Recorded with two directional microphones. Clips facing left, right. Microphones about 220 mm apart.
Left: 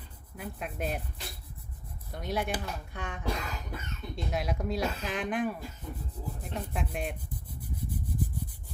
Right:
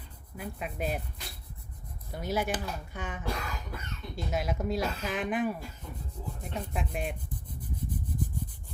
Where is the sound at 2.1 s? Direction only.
5° right (ahead or behind).